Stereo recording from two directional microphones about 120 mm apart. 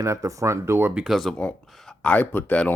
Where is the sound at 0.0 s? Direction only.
25° right (ahead or behind).